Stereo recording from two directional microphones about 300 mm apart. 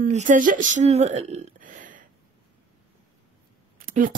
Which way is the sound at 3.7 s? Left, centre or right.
Right.